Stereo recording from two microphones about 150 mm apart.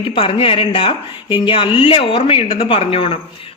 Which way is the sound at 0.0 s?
35° left (ahead or behind).